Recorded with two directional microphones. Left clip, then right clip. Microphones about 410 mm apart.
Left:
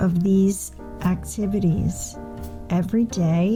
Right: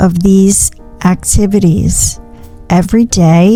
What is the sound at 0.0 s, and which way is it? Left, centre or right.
Speech, right.